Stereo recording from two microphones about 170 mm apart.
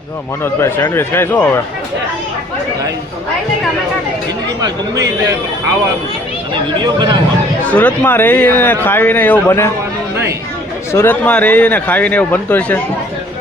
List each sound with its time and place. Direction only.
0.4 s speech: 15° left (ahead or behind)
6.5 s speech: 25° right (ahead or behind)
7.7 s speech: 10° left (ahead or behind)
10.9 s speech: 10° left (ahead or behind)